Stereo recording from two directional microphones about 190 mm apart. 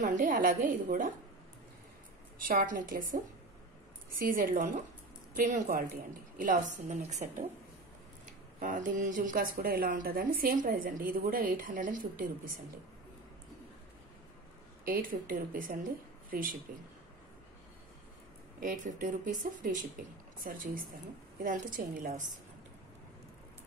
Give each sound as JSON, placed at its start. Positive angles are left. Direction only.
{"t": 0.0, "sound": "speech", "side_deg": -45}
{"t": 2.4, "sound": "speech", "side_deg": -45}
{"t": 4.2, "sound": "a woman's voice", "side_deg": -45}
{"t": 8.5, "sound": "speech", "side_deg": -45}
{"t": 14.9, "sound": "speech", "side_deg": -45}
{"t": 18.6, "sound": "speech", "side_deg": -40}